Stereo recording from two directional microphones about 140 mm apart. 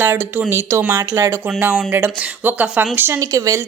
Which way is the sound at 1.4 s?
5° right (ahead or behind).